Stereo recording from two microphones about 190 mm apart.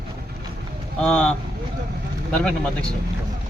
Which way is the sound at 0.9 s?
5° left (ahead or behind).